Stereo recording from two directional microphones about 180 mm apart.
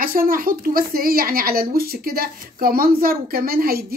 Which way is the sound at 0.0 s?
55° right (ahead or behind).